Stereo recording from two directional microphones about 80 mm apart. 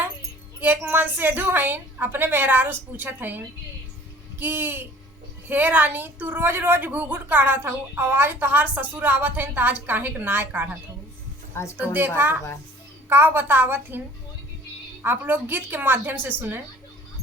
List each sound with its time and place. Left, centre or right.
0.6 s a woman's voice: right
11.5 s a woman's voice: left
11.9 s a woman's voice: right
15.0 s a woman's voice: right